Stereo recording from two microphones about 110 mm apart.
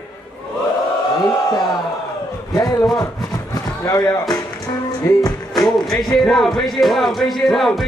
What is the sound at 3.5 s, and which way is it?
Basketball bounce, 35° left (ahead or behind).